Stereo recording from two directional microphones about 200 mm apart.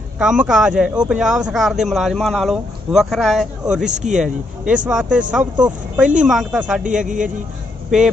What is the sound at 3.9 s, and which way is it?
Speech, 35° right (ahead or behind).